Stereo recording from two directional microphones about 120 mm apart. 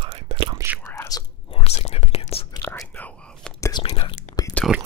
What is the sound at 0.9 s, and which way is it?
Whispering, 30° left (ahead or behind).